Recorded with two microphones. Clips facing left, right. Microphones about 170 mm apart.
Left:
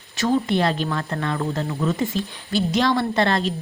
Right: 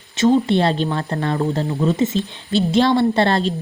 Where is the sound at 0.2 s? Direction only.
25° right (ahead or behind).